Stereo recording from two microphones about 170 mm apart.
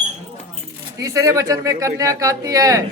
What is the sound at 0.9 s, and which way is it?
A woman's voice, 20° right (ahead or behind).